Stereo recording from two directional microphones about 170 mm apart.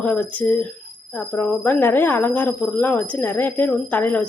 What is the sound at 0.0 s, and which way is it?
A woman's voice, 10° left (ahead or behind).